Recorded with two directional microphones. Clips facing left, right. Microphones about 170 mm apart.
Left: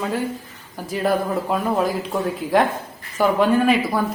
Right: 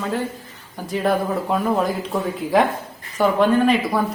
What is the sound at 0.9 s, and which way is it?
Speech, centre (ahead or behind).